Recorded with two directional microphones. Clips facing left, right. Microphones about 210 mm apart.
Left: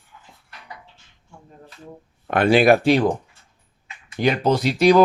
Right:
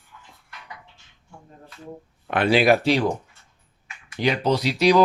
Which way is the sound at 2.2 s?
45° left (ahead or behind).